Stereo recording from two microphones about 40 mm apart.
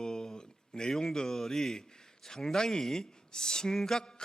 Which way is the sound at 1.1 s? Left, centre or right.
Centre.